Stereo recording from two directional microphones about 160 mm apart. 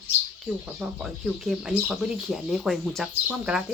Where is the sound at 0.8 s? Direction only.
Centre (ahead or behind).